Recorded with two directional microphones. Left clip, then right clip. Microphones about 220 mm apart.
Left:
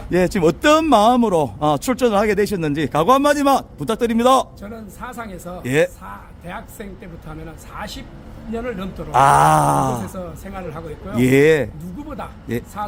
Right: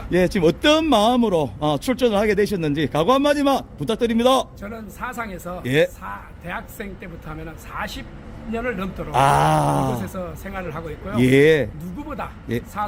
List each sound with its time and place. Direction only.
0.1 s speech: 10° left (ahead or behind)